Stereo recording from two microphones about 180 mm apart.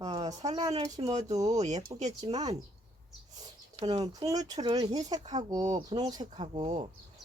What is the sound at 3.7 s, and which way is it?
Speech, 35° right (ahead or behind).